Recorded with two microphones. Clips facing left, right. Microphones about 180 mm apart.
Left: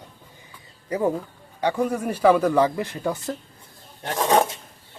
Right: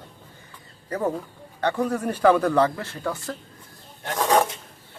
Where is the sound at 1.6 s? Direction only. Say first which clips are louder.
Left 1 dB; 10° left (ahead or behind).